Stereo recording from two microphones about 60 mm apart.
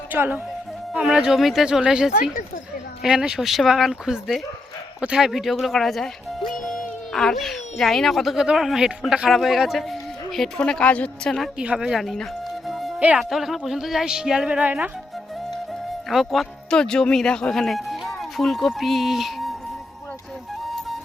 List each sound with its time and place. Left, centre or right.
1.0 s a man's voice: centre
10.6 s a woman's voice: centre
11.6 s speech: centre
11.9 s a man's voice: centre
12.6 s music: centre
13.1 s speech: centre
14.6 s speech: right
16.0 s a man's voice: centre
16.6 s speech: centre